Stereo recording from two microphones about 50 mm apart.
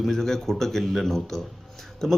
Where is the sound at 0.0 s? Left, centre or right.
Centre.